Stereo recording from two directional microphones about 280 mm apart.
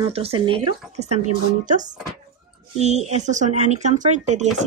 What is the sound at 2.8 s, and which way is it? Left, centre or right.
Speech, right.